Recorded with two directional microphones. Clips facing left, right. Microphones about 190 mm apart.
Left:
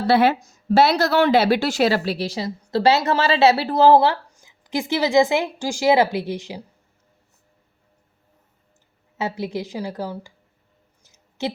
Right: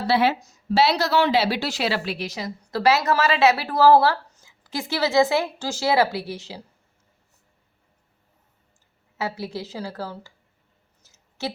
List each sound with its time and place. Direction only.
0.1 s a woman's voice: 50° left (ahead or behind); by 6.6 s 15° left (ahead or behind)
9.1 s a woman's voice: 20° left (ahead or behind)
11.0 s a sound: 15° left (ahead or behind)